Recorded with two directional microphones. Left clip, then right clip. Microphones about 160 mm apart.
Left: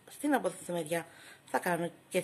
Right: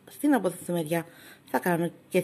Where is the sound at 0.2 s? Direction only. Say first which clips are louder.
Right 6 dB; 25° right (ahead or behind).